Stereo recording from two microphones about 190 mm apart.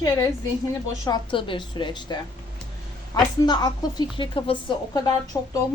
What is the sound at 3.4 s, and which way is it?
A woman's voice, 20° left (ahead or behind).